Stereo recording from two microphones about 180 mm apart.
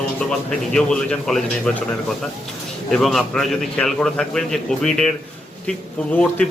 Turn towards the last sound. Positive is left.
turn(degrees=5)  # may be behind; listen again after turning